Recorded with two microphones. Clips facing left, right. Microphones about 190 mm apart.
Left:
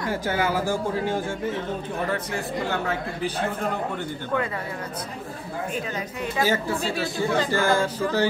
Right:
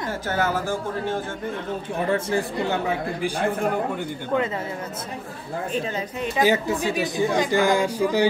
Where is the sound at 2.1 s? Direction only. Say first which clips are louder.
Right 5 dB; 25° right (ahead or behind).